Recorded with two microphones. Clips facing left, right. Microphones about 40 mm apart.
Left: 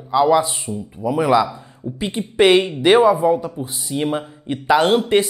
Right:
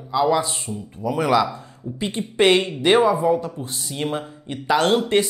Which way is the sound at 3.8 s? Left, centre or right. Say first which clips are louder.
Left 5 dB; centre.